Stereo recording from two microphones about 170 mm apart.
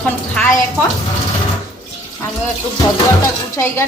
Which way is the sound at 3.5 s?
15° left (ahead or behind).